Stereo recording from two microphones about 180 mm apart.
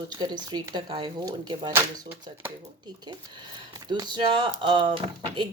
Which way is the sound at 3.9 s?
25° right (ahead or behind).